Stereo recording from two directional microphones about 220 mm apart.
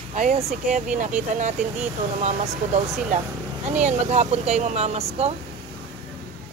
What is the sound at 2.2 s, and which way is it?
Speech, 30° right (ahead or behind).